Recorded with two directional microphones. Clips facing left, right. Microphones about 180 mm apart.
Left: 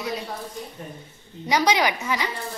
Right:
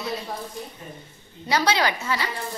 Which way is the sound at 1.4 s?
15° left (ahead or behind).